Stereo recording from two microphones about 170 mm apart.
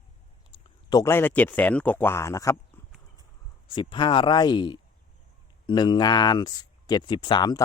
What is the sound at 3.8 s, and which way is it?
Speech, 30° left (ahead or behind).